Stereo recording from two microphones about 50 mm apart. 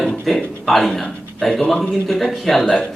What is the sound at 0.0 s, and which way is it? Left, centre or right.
A man's voice, centre.